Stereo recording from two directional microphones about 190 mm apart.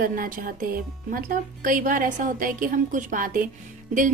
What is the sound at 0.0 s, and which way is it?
A woman's voice, 45° right (ahead or behind).